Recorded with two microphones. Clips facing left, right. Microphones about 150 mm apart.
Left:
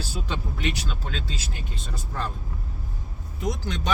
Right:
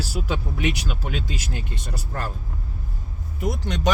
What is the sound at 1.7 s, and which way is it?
Speech, 80° right.